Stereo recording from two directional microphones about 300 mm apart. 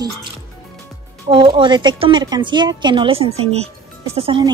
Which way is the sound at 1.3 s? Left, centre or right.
Centre.